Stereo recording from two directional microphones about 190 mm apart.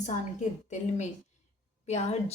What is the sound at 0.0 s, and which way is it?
A woman's voice, 40° left (ahead or behind).